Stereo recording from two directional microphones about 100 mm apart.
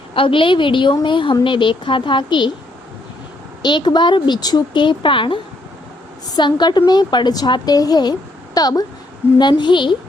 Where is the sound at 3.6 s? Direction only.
50° left (ahead or behind).